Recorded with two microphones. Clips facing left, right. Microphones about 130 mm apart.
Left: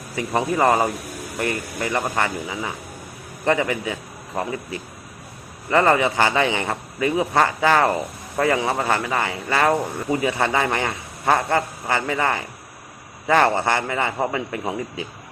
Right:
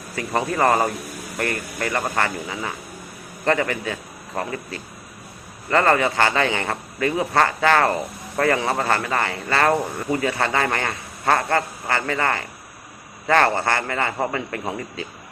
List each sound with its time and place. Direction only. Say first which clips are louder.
0.2 s speech: left 1 dB; 15° left (ahead or behind)